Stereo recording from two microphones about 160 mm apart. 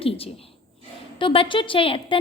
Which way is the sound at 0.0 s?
35° left (ahead or behind).